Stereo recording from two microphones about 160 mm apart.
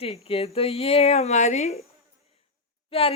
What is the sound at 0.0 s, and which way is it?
Speech, 35° left (ahead or behind).